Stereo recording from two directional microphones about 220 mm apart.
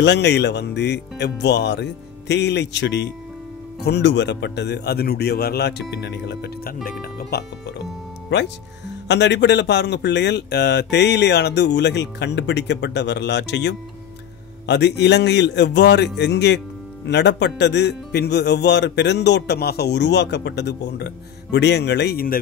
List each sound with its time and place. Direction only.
0.0 s speech: 50° left (ahead or behind)